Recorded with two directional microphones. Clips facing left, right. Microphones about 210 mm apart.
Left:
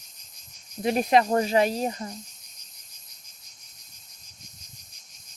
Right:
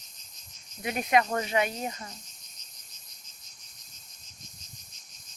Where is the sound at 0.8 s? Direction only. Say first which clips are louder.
Left 5 dB; 35° left (ahead or behind).